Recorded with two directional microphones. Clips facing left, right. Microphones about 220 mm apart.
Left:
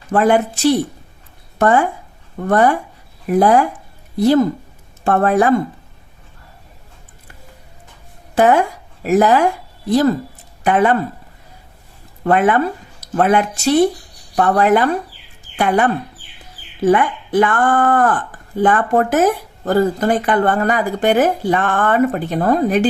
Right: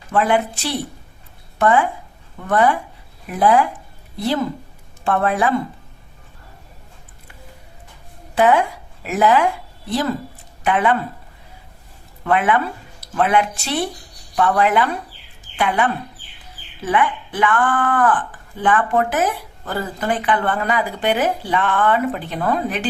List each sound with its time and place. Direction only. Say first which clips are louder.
0.1 s speech: left 4 dB; 40° left (ahead or behind)
8.4 s speech: left 3 dB; 45° left (ahead or behind)
12.2 s speech: left 4 dB; 40° left (ahead or behind)